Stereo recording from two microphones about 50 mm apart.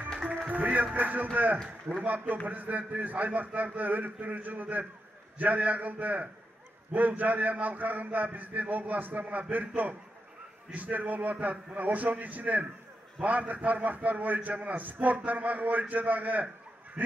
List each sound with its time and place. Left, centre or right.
0.5 s music: right
0.9 s a man's voice: right